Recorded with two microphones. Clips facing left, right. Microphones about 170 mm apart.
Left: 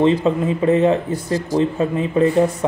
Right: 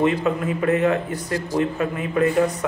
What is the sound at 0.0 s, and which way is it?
A man's voice, 25° left (ahead or behind).